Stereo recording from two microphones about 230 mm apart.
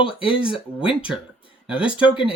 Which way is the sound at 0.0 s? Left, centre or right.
Left.